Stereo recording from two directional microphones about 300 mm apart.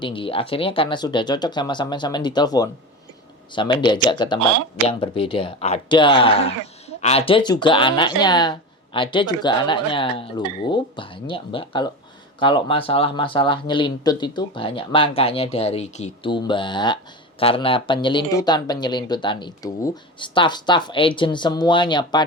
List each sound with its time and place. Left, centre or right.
0.0 s speech: centre